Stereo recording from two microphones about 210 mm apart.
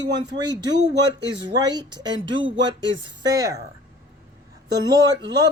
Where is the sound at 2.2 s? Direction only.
65° right (ahead or behind).